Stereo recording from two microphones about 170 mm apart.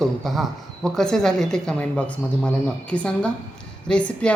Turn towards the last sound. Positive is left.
turn(degrees=5)  # may be behind; listen again after turning